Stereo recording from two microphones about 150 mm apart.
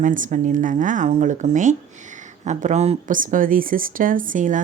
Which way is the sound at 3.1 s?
60° right (ahead or behind).